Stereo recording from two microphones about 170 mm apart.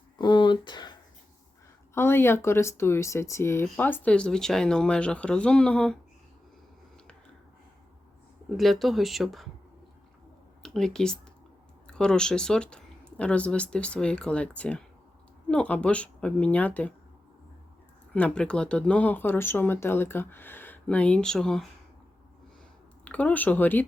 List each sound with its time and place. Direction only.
0.2 s a sound: 25° left (ahead or behind)
2.0 s speech: 15° left (ahead or behind)
8.4 s speech: centre (ahead or behind)
10.6 s speech: 5° left (ahead or behind)
18.1 s speech: 5° left (ahead or behind)
23.0 s speech: 10° left (ahead or behind)